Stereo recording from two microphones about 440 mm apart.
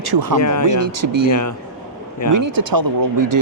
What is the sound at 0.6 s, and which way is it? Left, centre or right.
Speech, right.